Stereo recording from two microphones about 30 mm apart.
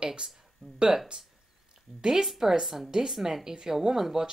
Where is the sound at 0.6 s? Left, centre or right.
Centre.